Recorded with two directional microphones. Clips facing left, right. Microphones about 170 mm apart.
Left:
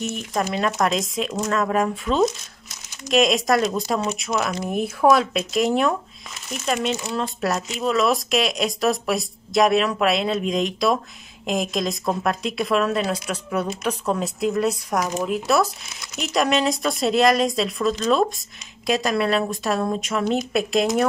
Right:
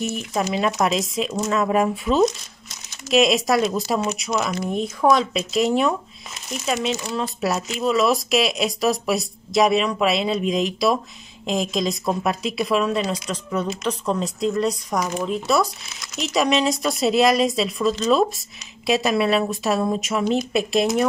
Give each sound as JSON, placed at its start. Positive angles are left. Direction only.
{"t": 0.3, "sound": "speech", "side_deg": -5}